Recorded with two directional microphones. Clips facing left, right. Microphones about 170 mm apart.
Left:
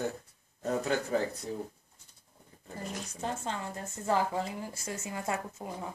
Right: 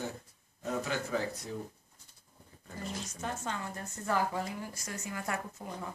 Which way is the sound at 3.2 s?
30° left (ahead or behind).